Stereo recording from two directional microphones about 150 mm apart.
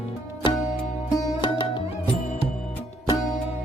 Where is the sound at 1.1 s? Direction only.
30° left (ahead or behind).